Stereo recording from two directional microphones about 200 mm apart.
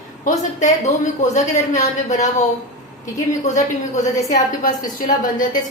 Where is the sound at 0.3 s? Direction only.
35° left (ahead or behind).